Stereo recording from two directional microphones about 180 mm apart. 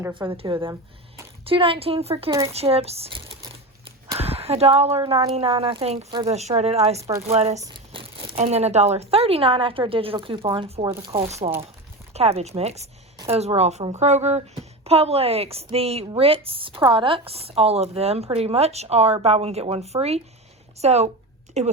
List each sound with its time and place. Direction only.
0.3 s speech: 30° right (ahead or behind)
7.6 s crumpling: 25° right (ahead or behind)
8.4 s speech: 40° right (ahead or behind)